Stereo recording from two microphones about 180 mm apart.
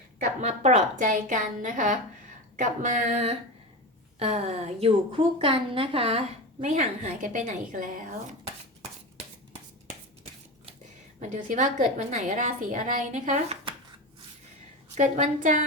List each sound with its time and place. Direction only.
0.4 s a woman's voice: 35° right (ahead or behind)
11.2 s a woman's voice: 45° right (ahead or behind)
14.9 s a woman's voice: 40° right (ahead or behind)